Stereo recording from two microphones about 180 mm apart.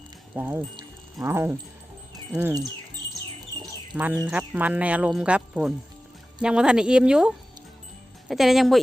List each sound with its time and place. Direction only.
0.3 s speech: 10° right (ahead or behind)